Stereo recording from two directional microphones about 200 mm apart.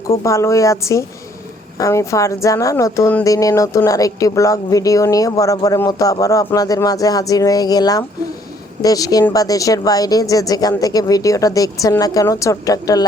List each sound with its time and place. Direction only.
0.1 s speech: 15° left (ahead or behind)